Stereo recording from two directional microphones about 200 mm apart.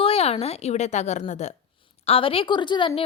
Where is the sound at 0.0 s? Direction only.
30° left (ahead or behind).